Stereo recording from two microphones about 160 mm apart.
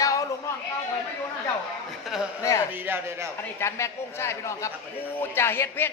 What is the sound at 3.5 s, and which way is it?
A man's voice, 15° left (ahead or behind).